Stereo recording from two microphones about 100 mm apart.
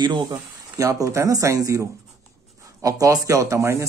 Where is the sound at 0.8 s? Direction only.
30° right (ahead or behind).